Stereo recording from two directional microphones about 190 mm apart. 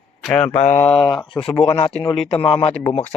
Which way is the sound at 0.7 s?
35° left (ahead or behind).